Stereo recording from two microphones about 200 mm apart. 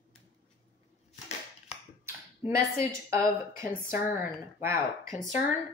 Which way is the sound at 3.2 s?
45° left (ahead or behind).